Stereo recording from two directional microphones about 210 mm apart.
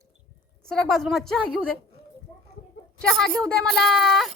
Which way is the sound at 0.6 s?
5° left (ahead or behind).